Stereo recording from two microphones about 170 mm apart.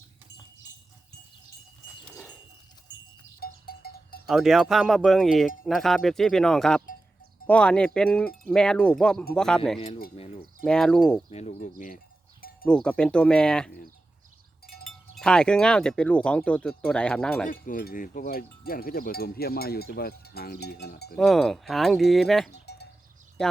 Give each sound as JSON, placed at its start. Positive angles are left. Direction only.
{"t": 2.0, "sound": "dog", "side_deg": 5}
{"t": 3.4, "sound": "cowbell", "side_deg": 65}
{"t": 4.3, "sound": "speech", "side_deg": 0}
{"t": 11.3, "sound": "speech", "side_deg": 40}
{"t": 12.4, "sound": "cowbell", "side_deg": 60}
{"t": 12.6, "sound": "speech", "side_deg": 5}
{"t": 14.8, "sound": "speech", "side_deg": 5}
{"t": 17.5, "sound": "cowbell", "side_deg": 50}
{"t": 21.2, "sound": "speech", "side_deg": 0}
{"t": 22.6, "sound": "cowbell", "side_deg": 75}
{"t": 23.4, "sound": "speech", "side_deg": 5}